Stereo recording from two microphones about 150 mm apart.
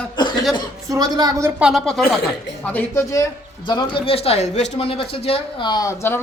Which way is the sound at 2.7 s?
15° left (ahead or behind).